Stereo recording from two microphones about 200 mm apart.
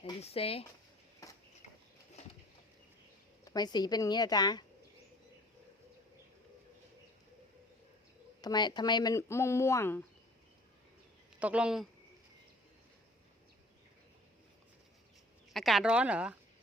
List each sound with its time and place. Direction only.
0.0 s speech: 30° left (ahead or behind)
1.2 s a sound: 15° left (ahead or behind)
3.4 s speech: 20° left (ahead or behind)
8.4 s speech: 20° left (ahead or behind)
11.3 s a man's voice: 5° right (ahead or behind)
15.5 s speech: centre (ahead or behind)